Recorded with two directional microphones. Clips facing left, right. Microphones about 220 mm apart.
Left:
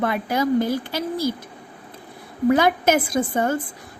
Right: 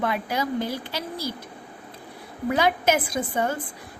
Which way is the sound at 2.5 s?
50° left (ahead or behind).